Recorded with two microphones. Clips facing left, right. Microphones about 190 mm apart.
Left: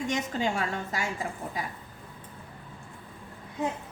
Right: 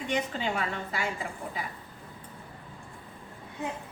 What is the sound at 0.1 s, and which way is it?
Speech, 45° left (ahead or behind).